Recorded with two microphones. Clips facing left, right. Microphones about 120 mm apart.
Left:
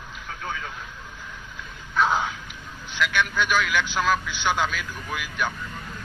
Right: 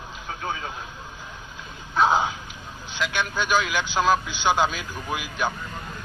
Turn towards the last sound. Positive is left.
turn(degrees=-30)  # may be behind; listen again after turning